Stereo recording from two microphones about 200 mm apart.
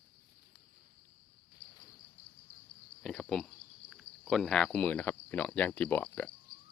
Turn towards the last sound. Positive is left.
turn(degrees=5)  # may be behind; listen again after turning